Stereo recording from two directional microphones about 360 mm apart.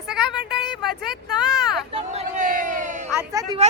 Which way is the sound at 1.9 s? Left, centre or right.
Centre.